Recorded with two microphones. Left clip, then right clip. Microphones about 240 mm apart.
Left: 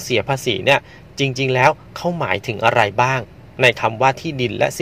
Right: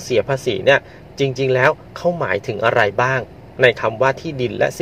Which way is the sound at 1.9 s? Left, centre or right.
Left.